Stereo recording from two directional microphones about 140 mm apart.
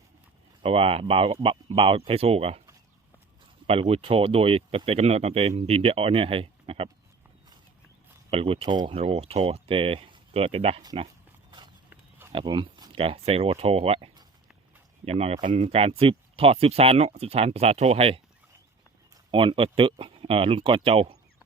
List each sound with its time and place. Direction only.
0.6 s speech: 40° right (ahead or behind)
3.7 s speech: 45° right (ahead or behind)
8.3 s speech: 45° right (ahead or behind)
12.3 s speech: 35° right (ahead or behind)
19.3 s speech: 40° right (ahead or behind)